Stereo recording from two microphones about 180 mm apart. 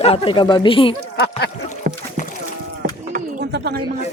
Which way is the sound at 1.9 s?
55° right (ahead or behind).